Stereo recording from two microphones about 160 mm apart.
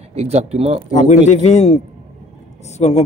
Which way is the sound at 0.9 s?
50° left (ahead or behind).